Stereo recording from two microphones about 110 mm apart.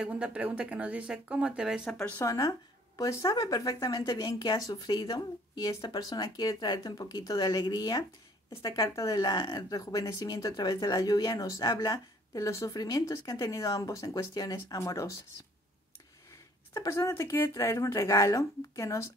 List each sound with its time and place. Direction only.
0.0 s speech: 10° right (ahead or behind)
1.9 s speech: 5° left (ahead or behind)
2.2 s speech: 30° left (ahead or behind)
16.3 s a sound: 25° left (ahead or behind)
17.4 s speech: 30° left (ahead or behind)